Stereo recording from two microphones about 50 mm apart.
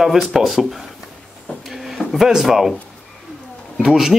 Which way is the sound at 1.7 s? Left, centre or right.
Centre.